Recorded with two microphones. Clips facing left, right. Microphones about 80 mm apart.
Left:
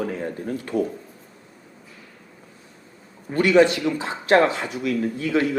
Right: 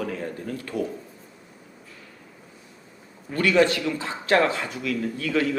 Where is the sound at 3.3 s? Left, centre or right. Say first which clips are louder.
Left 4 dB; left.